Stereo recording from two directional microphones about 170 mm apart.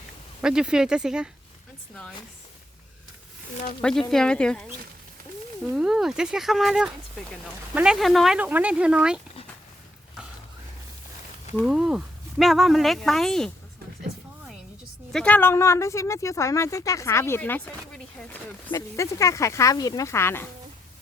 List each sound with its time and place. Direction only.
0.4 s speech: 5° right (ahead or behind)
3.8 s speech: 5° left (ahead or behind)
5.7 s speech: 5° right (ahead or behind)
11.6 s speech: 5° right (ahead or behind)
15.1 s speech: 5° left (ahead or behind)